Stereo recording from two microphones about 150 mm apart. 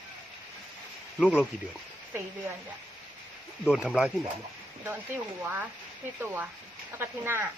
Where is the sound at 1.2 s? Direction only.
5° right (ahead or behind).